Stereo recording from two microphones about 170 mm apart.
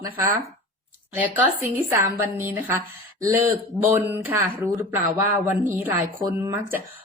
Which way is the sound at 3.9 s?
15° right (ahead or behind).